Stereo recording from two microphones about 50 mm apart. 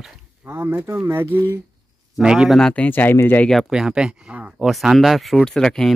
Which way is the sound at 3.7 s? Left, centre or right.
Centre.